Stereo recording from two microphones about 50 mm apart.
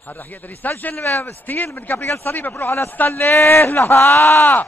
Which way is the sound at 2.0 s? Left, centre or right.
Left.